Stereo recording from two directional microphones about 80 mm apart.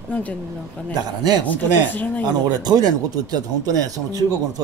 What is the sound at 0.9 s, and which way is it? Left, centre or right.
Speech, right.